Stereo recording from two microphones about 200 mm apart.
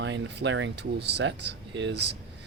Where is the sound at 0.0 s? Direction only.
65° right (ahead or behind).